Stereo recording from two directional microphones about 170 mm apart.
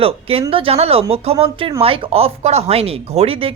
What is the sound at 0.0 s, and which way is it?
Speech, 35° right (ahead or behind).